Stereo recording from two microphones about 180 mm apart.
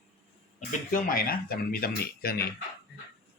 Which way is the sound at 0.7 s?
50° left (ahead or behind).